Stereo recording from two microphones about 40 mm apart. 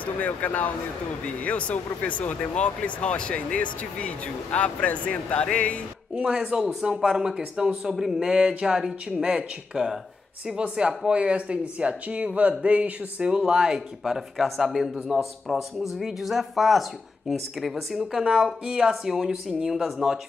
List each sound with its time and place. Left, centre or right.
0.0 s speech: left
6.1 s a man's voice: right
8.4 s speech: right
13.5 s a man's voice: centre
18.7 s a man's voice: centre